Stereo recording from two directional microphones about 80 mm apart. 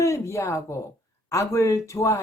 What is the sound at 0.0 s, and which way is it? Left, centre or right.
Speech, left.